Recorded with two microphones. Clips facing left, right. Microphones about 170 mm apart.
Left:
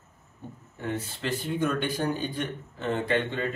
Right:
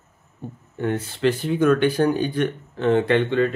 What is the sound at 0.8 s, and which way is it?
Speech, 75° right (ahead or behind).